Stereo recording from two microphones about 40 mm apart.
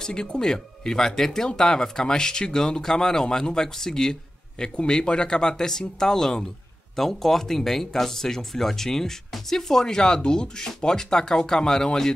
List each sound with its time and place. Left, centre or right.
0.0 s speech: centre